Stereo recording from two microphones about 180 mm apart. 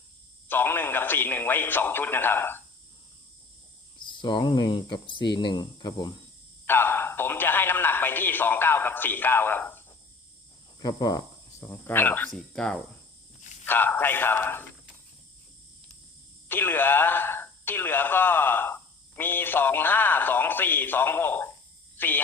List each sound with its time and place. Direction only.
0.4 s a man's voice: 10° left (ahead or behind)
4.0 s speech: 25° left (ahead or behind)
6.7 s a man's voice: 10° left (ahead or behind)
10.8 s a man's voice: 20° left (ahead or behind)
16.5 s speech: 10° left (ahead or behind)